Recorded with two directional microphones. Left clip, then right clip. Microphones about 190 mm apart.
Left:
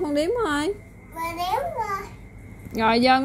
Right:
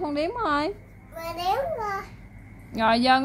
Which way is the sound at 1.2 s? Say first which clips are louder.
Left 1 dB; 25° right (ahead or behind).